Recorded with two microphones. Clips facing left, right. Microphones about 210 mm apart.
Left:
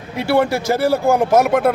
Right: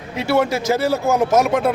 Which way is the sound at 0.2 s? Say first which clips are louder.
Left 2 dB; 60° left (ahead or behind).